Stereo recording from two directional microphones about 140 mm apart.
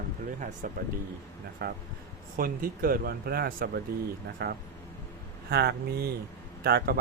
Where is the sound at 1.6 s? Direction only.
90° right.